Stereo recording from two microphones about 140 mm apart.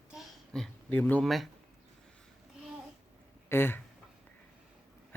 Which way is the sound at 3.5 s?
15° left (ahead or behind).